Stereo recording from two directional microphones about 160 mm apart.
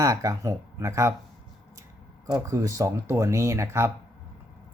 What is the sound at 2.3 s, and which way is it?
Speech, 20° right (ahead or behind).